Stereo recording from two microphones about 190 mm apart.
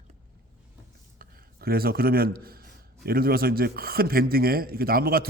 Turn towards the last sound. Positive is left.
turn(degrees=-55)  # may be behind; listen again after turning